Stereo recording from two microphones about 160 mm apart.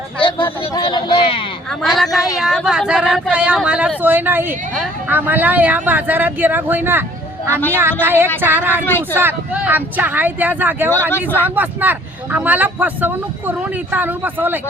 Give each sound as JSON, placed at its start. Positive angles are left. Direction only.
{"t": 0.2, "sound": "a sound", "side_deg": 30}
{"t": 0.9, "sound": "speech", "side_deg": 30}
{"t": 2.0, "sound": "a woman's voice", "side_deg": 0}
{"t": 8.8, "sound": "speech", "side_deg": 10}
{"t": 9.1, "sound": "speech", "side_deg": -10}
{"t": 11.1, "sound": "speech", "side_deg": 15}
{"t": 11.5, "sound": "speech", "side_deg": -10}